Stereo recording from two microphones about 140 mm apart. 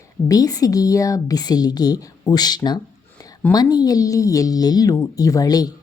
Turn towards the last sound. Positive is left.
turn(degrees=25)  # may be behind; listen again after turning